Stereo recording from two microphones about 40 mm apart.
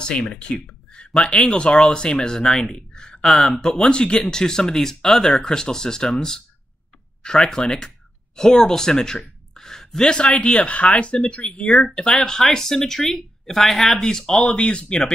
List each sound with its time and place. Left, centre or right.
0.0 s speech: left
3.7 s speech: left
14.4 s speech: left